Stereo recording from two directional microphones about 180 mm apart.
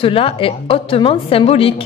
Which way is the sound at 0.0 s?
30° left (ahead or behind).